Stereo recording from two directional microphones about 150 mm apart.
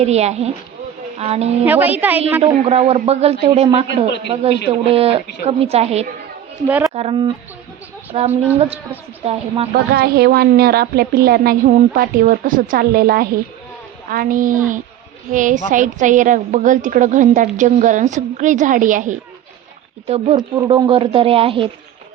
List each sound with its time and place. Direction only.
0.0 s a man's voice: 45° right (ahead or behind)
1.6 s a woman's voice: 10° right (ahead or behind)
2.4 s a man's voice: 40° right (ahead or behind)
9.9 s a woman's voice: 85° right
14.1 s a woman's voice: 65° right (ahead or behind)
20.1 s speech: 40° right (ahead or behind)
20.3 s speech: 25° right (ahead or behind)
20.8 s speech: 35° right (ahead or behind)